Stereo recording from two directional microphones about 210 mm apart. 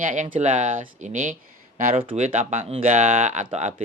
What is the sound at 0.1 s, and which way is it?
Speech, 35° right (ahead or behind).